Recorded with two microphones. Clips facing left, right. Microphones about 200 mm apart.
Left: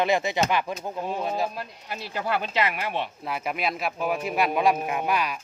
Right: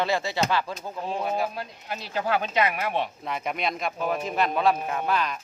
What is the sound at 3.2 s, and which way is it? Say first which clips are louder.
Speech: even; 5° left (ahead or behind).